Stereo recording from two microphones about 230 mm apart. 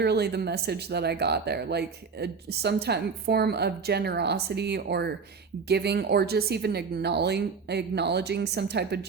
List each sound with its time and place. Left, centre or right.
0.0 s speech: right